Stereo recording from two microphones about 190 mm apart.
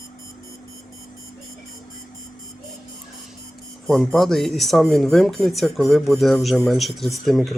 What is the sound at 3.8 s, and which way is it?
Speech, centre (ahead or behind).